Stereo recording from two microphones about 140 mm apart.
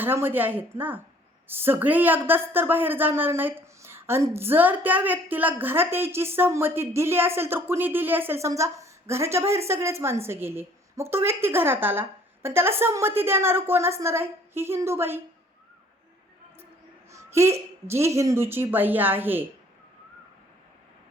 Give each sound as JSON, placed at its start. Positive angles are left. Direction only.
{"t": 0.0, "sound": "speech", "side_deg": -15}
{"t": 17.1, "sound": "speech", "side_deg": -20}